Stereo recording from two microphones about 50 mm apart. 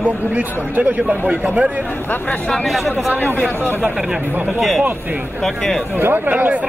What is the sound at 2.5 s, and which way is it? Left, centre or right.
Speech, centre.